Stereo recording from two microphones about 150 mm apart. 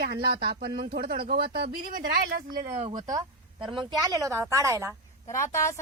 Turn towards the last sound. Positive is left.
turn(degrees=20)  # may be behind; listen again after turning